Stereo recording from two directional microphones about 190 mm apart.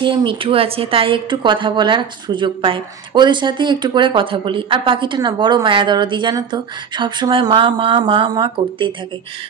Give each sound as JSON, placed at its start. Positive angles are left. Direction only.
{"t": 0.0, "sound": "speech", "side_deg": -25}